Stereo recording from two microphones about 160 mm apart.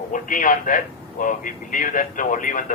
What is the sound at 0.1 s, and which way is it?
Speech, 55° left (ahead or behind).